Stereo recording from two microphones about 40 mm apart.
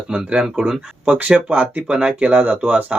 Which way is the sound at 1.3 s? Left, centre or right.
Right.